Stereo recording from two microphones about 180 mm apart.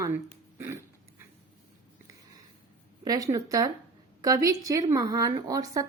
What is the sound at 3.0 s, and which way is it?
Speech, 20° right (ahead or behind).